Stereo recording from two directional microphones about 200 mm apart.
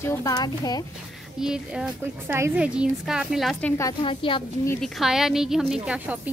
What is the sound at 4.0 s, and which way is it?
Speech, 25° left (ahead or behind).